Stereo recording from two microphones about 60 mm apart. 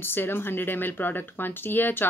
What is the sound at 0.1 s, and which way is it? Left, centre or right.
Speech, left.